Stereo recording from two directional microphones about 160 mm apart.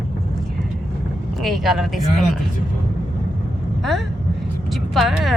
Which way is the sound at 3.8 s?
Centre (ahead or behind).